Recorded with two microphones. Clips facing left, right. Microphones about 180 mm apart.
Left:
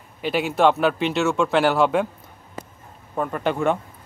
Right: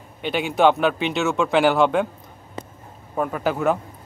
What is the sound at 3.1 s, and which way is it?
Speech, 5° right (ahead or behind).